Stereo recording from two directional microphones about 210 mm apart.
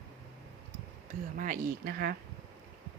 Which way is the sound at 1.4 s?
40° right (ahead or behind).